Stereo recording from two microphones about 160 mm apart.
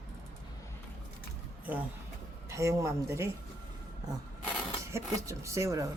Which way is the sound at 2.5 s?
20° right (ahead or behind).